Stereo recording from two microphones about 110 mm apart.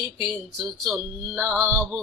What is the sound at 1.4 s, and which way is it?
Speech, 20° right (ahead or behind).